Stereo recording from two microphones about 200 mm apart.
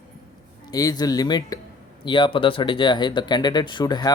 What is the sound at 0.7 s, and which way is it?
Speech, 20° left (ahead or behind).